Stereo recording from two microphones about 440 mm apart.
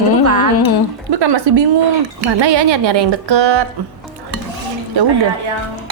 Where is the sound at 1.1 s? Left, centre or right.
Right.